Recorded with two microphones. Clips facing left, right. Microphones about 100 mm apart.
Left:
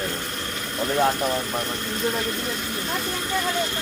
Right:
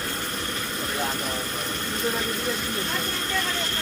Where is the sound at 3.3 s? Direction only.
15° left (ahead or behind).